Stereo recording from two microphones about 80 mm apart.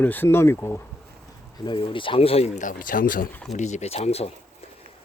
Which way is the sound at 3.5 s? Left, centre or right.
Centre.